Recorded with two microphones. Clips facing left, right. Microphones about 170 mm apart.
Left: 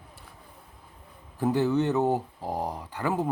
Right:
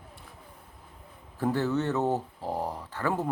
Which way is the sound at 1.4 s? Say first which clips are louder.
Left 3 dB; 15° left (ahead or behind).